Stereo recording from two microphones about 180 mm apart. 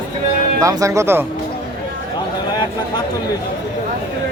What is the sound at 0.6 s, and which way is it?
Speech, 20° right (ahead or behind).